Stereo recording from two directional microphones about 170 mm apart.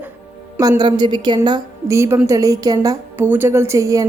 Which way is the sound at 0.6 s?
25° right (ahead or behind).